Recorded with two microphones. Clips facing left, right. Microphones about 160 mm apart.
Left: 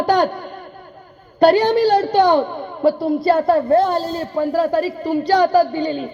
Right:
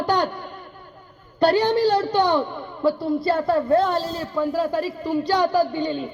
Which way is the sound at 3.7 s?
45° left (ahead or behind).